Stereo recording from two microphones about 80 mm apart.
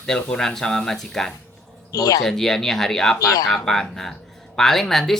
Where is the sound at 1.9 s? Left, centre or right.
Left.